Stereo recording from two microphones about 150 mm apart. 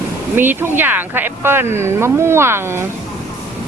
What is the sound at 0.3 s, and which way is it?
Speech, 15° right (ahead or behind).